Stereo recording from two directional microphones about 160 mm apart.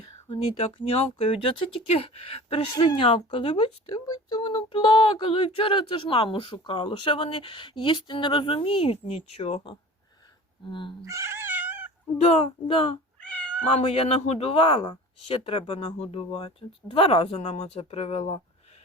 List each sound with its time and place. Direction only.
0.0 s speech: 30° left (ahead or behind)
11.0 s cat: 20° right (ahead or behind)
12.1 s speech: 40° left (ahead or behind)
13.1 s cat: 10° left (ahead or behind)
13.7 s speech: 35° left (ahead or behind)